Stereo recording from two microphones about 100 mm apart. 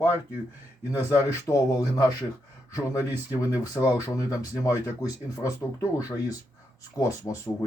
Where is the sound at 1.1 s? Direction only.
35° left (ahead or behind).